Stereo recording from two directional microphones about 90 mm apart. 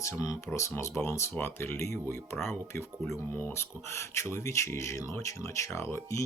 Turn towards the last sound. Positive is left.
turn(degrees=30)  # may be behind; listen again after turning